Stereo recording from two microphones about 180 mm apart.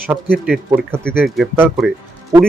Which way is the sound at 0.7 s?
15° right (ahead or behind).